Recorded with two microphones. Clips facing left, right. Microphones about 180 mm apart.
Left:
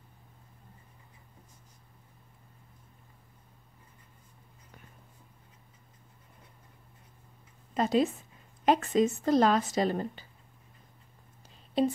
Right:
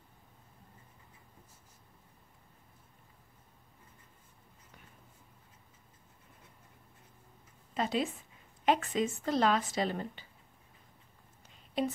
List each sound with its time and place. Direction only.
7.7 s speech: 40° left (ahead or behind)
11.8 s speech: 30° left (ahead or behind)